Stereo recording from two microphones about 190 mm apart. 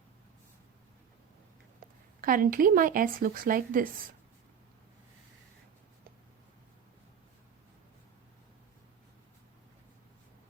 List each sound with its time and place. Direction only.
2.2 s speech: 50° right (ahead or behind)